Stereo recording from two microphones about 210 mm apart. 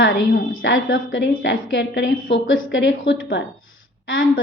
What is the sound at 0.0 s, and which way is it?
A woman's voice, 60° left (ahead or behind).